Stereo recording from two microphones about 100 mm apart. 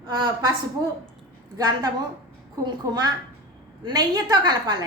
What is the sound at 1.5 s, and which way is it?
A woman's voice, 40° right (ahead or behind).